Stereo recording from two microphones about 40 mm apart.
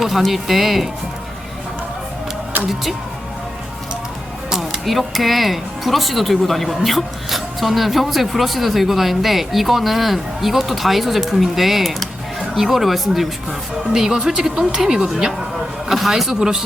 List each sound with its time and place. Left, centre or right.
0.0 s speech: centre
4.4 s music: centre
4.9 s speech: centre
13.9 s speech: centre